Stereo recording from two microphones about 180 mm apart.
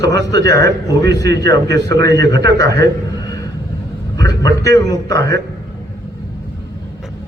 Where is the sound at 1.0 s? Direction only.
70° right (ahead or behind).